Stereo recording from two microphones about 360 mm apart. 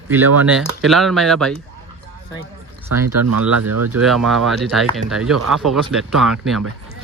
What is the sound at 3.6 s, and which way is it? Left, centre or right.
Speech, right.